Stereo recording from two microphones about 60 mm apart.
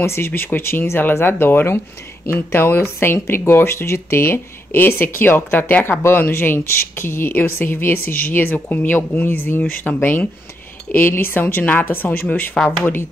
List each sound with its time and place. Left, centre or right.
0.0 s speech: left
0.3 s speech: left
9.9 s speech: centre
11.1 s speech: left